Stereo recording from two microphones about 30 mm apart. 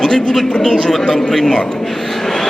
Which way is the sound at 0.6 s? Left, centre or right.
Centre.